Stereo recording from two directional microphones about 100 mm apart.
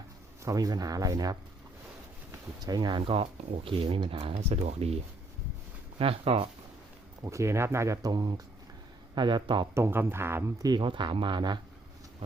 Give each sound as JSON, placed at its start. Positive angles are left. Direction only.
{"t": 0.4, "sound": "speech", "side_deg": -35}
{"t": 2.6, "sound": "speech", "side_deg": -45}
{"t": 3.1, "sound": "speech", "side_deg": -65}
{"t": 6.0, "sound": "speech", "side_deg": -75}
{"t": 7.2, "sound": "speech", "side_deg": -30}
{"t": 9.7, "sound": "speech", "side_deg": -25}
{"t": 10.6, "sound": "speech", "side_deg": -45}